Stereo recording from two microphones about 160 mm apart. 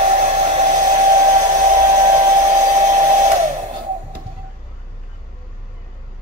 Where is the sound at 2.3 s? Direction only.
50° right (ahead or behind).